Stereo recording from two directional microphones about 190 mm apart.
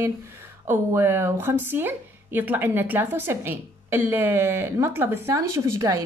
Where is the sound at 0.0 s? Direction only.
10° right (ahead or behind).